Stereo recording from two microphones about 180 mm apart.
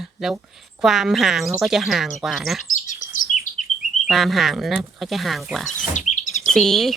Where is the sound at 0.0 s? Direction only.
Centre (ahead or behind).